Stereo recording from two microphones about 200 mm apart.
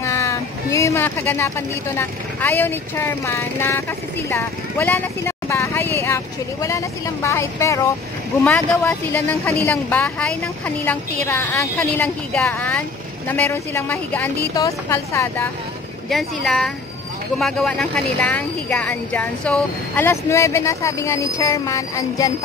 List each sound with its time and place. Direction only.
0.0 s a sound: 15° left (ahead or behind)
2.0 s speech: 10° left (ahead or behind)
16.1 s speech: centre (ahead or behind)